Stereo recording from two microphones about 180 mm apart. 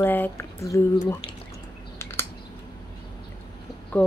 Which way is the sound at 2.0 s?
15° left (ahead or behind).